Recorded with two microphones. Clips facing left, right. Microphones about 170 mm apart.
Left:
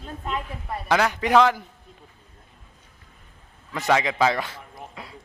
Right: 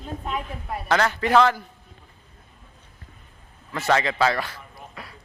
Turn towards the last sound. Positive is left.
turn(degrees=20)  # may be behind; listen again after turning